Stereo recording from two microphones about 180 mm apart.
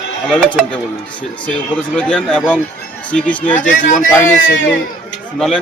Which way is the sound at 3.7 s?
45° left (ahead or behind).